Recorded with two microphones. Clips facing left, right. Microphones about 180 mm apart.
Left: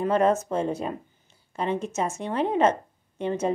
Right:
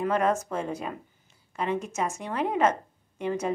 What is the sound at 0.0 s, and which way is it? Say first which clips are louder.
A woman's voice: left 3 dB; 30° left (ahead or behind).